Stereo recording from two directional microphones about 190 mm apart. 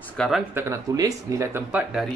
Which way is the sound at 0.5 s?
15° right (ahead or behind).